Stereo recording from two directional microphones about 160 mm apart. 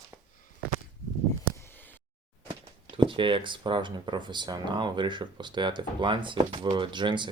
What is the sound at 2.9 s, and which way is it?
Speech, 30° right (ahead or behind).